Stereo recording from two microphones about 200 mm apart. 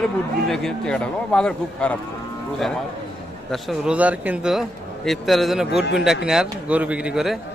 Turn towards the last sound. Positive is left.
turn(degrees=0)  # may be behind; listen again after turning